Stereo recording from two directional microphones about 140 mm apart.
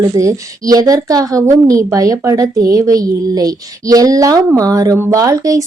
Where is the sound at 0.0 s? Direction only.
25° right (ahead or behind).